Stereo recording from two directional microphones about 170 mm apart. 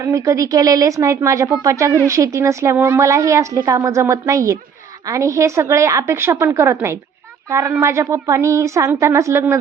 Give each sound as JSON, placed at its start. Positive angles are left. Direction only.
{"t": 0.0, "sound": "a woman's voice", "side_deg": -20}